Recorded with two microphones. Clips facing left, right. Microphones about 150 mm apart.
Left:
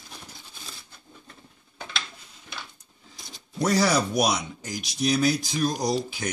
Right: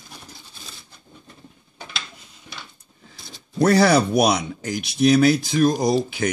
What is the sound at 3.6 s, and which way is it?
Speech, 60° right (ahead or behind).